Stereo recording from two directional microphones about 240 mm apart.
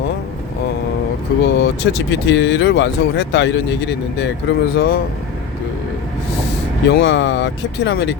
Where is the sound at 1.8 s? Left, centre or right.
Left.